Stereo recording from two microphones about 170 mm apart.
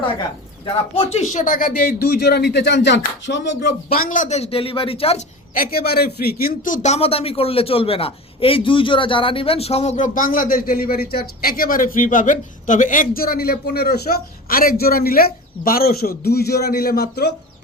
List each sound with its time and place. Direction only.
0.6 s a man's voice: 35° left (ahead or behind)
5.5 s a man's voice: 65° left (ahead or behind)
6.8 s a man's voice: 35° left (ahead or behind); by 17.3 s 70° left (ahead or behind)